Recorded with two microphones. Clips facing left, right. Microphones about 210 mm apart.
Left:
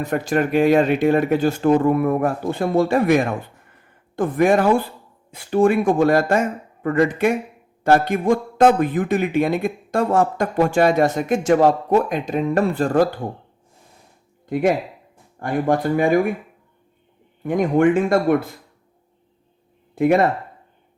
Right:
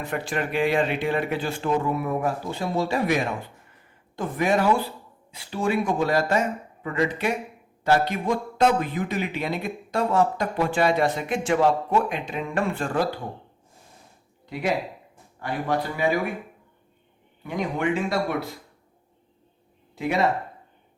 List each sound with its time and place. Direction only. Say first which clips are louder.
0.0 s a man's voice: left 8 dB; 45° left (ahead or behind)
14.4 s a man's voice: left 7 dB; 50° left (ahead or behind)
17.4 s a man's voice: left 10 dB; 50° left (ahead or behind)
20.0 s a man's voice: left 7 dB; 50° left (ahead or behind)